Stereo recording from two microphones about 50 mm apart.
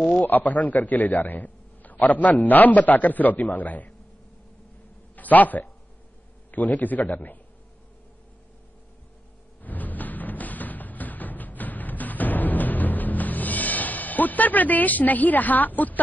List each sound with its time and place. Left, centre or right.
0.0 s a man's voice: left
5.1 s a man's voice: left
9.6 s music: left